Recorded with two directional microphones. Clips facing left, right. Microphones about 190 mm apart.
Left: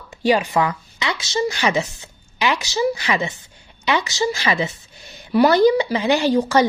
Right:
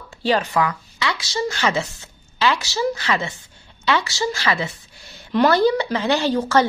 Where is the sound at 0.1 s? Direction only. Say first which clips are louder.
Left 2 dB; 15° left (ahead or behind).